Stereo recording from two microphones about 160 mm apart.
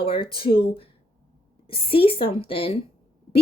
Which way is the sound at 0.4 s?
70° left (ahead or behind).